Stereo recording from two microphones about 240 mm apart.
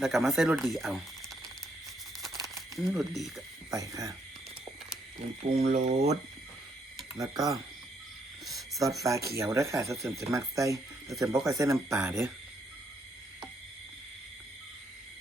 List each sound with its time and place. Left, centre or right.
0.0 s speech: centre
2.2 s crumpling: centre
2.7 s speech: centre
3.7 s speech: centre
5.5 s speech: right
7.2 s speech: centre
8.4 s a sound: centre
8.8 s speech: centre